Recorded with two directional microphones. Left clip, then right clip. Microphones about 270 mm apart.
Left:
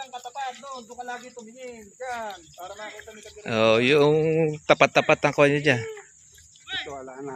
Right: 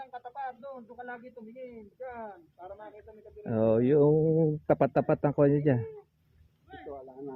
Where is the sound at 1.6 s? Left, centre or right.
Left.